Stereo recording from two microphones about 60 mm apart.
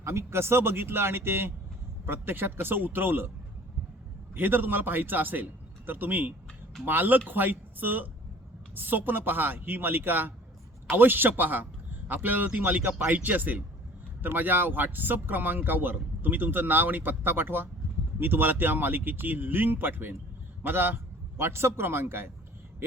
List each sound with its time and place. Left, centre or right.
0.0 s a man's voice: right
4.4 s a man's voice: right